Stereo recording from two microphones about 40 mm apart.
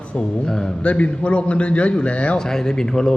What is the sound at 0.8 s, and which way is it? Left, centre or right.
Speech, left.